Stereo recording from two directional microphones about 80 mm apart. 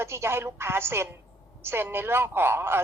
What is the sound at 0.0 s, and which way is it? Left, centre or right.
A woman's voice, right.